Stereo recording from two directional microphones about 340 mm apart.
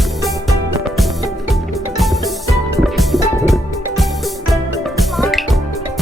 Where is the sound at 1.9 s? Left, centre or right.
Centre.